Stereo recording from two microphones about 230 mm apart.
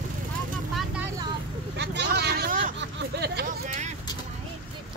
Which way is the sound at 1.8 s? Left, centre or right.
Right.